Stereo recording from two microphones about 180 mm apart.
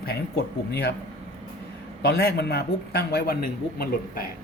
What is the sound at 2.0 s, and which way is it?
Speech, 65° left (ahead or behind).